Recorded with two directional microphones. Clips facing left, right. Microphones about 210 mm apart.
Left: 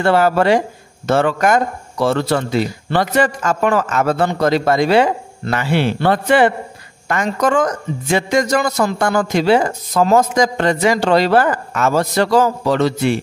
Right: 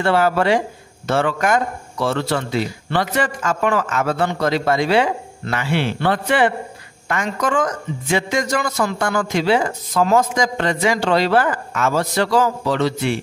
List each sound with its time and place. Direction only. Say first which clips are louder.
0.0 s a woman's voice: left 3 dB; 40° left (ahead or behind)